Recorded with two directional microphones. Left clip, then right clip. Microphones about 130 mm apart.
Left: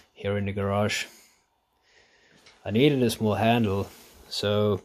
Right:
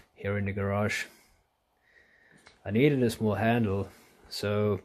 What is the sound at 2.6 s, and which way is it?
Speech, 15° left (ahead or behind).